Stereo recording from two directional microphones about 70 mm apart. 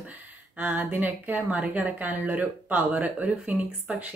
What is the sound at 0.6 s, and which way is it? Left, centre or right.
A woman's voice, right.